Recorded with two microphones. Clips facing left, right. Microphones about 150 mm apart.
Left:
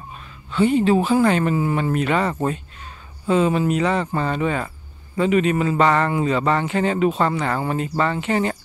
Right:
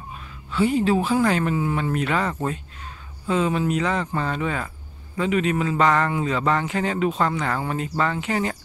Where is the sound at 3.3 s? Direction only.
Centre (ahead or behind).